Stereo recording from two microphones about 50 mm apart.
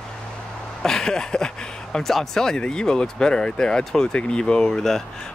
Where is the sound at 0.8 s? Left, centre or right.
Centre.